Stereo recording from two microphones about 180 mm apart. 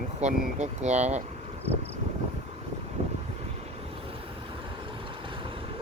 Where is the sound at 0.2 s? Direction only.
40° right (ahead or behind).